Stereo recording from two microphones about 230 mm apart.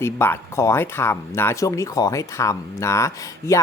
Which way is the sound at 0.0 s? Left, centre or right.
Centre.